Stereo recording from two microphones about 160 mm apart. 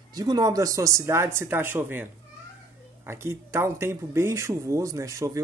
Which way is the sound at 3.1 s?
15° right (ahead or behind).